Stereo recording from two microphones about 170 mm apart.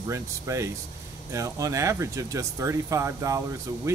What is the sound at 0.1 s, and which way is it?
Speech, 15° right (ahead or behind).